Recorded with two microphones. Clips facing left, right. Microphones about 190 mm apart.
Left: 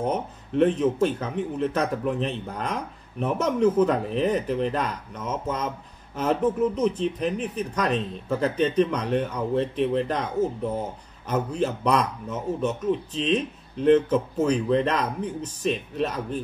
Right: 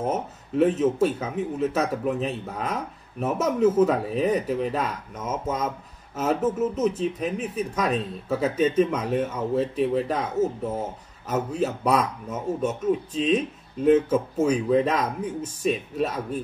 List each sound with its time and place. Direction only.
0.0 s speech: 5° right (ahead or behind)